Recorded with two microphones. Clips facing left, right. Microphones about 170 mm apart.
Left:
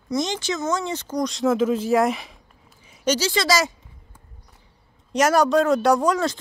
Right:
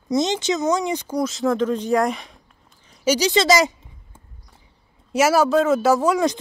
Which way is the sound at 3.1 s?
15° right (ahead or behind).